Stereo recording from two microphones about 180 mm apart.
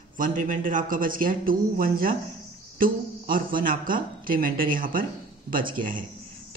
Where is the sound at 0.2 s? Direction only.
45° right (ahead or behind).